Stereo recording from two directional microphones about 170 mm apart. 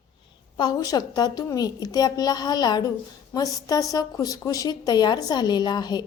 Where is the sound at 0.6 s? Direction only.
25° left (ahead or behind).